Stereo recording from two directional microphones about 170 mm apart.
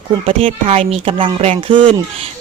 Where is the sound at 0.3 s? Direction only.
35° right (ahead or behind).